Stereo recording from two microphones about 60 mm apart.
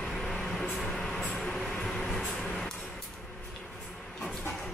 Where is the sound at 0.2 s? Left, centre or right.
Centre.